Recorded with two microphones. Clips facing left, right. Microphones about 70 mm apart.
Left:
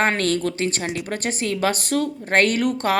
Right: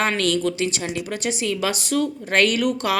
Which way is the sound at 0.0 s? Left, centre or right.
Left.